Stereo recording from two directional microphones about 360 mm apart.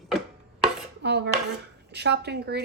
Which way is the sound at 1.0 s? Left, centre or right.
Right.